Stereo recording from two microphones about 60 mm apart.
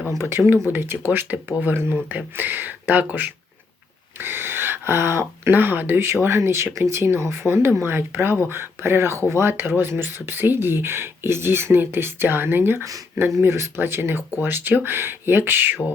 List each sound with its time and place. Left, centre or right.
0.2 s speech: right
4.2 s speech: right
6.2 s speech: right